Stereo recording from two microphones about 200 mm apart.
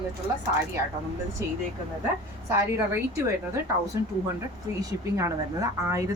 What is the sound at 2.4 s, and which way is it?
A woman's voice, 15° right (ahead or behind).